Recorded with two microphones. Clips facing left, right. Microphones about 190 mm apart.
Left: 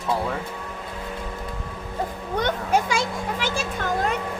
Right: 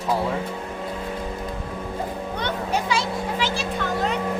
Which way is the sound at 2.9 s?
50° left (ahead or behind).